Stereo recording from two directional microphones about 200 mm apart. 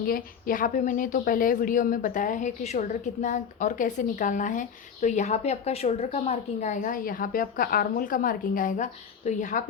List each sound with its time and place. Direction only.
0.0 s a woman's voice: 45° left (ahead or behind)